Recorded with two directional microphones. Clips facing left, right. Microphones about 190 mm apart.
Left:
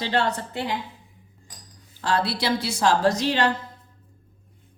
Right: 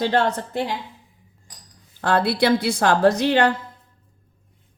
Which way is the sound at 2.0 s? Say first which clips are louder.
Right 5 dB; 55° right (ahead or behind).